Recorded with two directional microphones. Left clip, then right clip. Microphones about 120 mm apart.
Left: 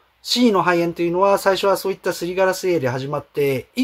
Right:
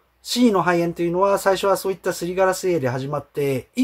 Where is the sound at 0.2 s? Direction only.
15° left (ahead or behind).